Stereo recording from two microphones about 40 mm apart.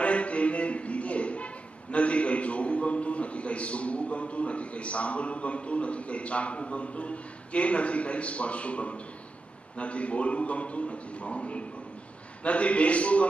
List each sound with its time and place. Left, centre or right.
0.0 s a man's voice: left